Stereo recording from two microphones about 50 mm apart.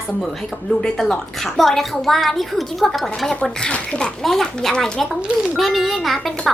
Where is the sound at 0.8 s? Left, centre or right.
Centre.